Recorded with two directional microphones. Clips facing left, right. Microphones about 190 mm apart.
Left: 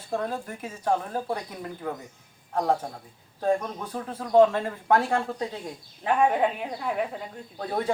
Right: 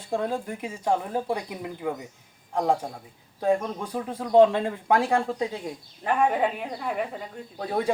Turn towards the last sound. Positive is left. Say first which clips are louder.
# right 1 dB
turn(degrees=0)  # may be behind; listen again after turning